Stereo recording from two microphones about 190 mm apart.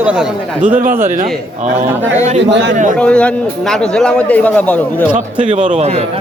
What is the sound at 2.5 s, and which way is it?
Speech, 70° right (ahead or behind).